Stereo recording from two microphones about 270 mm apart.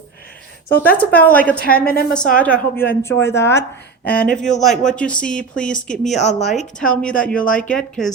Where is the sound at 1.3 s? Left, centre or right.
Centre.